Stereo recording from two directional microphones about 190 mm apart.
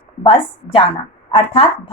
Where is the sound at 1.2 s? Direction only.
30° left (ahead or behind).